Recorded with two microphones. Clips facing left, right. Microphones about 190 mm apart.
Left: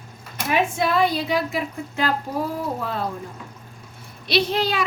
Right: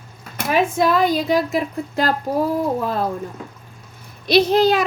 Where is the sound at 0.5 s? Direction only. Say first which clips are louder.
Right 4 dB; 40° right (ahead or behind).